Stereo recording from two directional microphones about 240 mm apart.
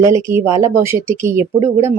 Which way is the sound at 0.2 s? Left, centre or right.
Centre.